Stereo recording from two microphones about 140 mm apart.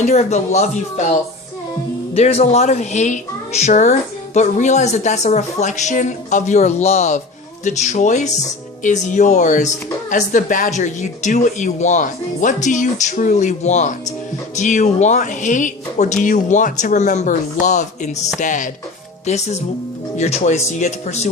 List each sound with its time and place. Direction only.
0.0 s speech: 55° left (ahead or behind)
19.3 s speech: 55° left (ahead or behind)